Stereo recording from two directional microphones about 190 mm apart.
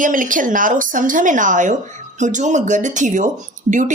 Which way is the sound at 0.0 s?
45° right (ahead or behind).